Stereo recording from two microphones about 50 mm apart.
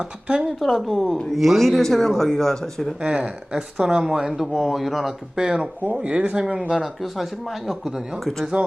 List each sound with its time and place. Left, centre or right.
0.0 s speech: centre
0.6 s speech: centre
3.0 s speech: centre
4.4 s speech: centre
5.4 s speech: centre
6.8 s speech: centre
8.5 s speech: right